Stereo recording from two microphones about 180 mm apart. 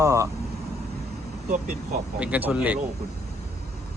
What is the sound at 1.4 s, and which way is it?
Speech, 50° right (ahead or behind).